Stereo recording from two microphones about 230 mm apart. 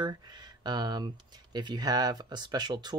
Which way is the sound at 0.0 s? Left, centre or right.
Centre.